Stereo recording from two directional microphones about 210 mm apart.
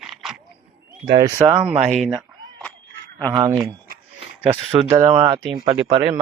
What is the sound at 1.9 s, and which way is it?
Speech, centre (ahead or behind).